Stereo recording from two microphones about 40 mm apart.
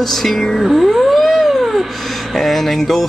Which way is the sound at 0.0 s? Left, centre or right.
Centre.